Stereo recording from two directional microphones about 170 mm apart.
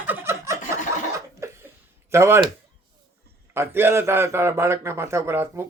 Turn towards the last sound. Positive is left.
turn(degrees=-15)  # may be behind; listen again after turning